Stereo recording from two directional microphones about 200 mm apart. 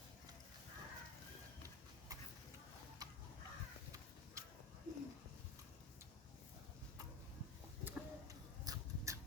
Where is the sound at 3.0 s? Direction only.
20° right (ahead or behind).